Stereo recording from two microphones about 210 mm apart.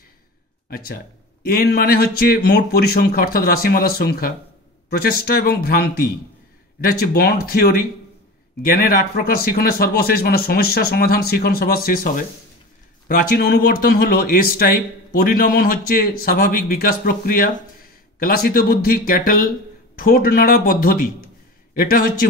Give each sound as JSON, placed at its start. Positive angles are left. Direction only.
{"t": 0.7, "sound": "speech", "side_deg": 45}